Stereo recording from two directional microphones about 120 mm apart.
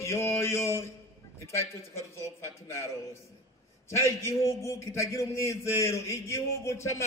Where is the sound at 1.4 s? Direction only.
25° left (ahead or behind).